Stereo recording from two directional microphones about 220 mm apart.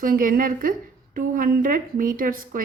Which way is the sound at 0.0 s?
40° right (ahead or behind).